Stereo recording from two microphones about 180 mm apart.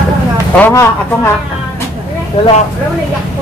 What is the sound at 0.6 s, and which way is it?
Speech, 10° left (ahead or behind).